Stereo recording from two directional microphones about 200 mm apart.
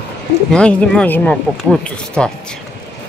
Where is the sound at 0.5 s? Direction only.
5° left (ahead or behind).